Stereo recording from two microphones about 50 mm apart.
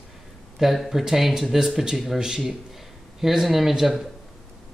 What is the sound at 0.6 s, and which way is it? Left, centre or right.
Speech, centre.